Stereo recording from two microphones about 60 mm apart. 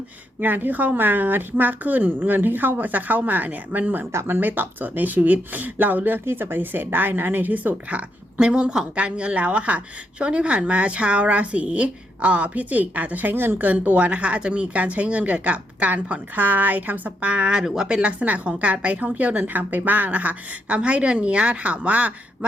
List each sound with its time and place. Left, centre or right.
0.3 s a woman's voice: right
4.1 s speech: right
4.4 s speech: right